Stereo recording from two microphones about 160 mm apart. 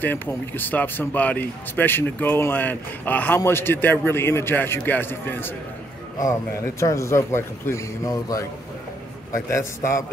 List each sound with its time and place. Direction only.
0.0 s a man's voice: 10° left (ahead or behind)